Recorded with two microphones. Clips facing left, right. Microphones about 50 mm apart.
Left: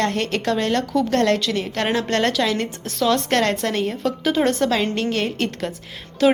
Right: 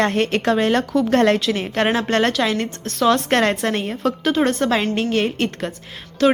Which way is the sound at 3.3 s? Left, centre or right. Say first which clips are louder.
Right 2 dB; centre.